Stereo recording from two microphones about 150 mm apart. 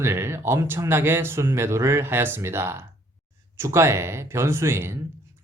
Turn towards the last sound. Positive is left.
turn(degrees=-15)  # may be behind; listen again after turning